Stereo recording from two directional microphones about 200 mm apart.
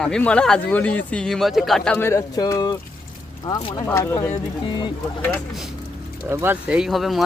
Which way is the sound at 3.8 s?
15° left (ahead or behind).